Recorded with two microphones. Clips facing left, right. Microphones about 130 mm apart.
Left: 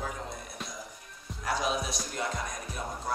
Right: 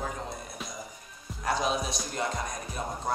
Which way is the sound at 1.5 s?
5° left (ahead or behind).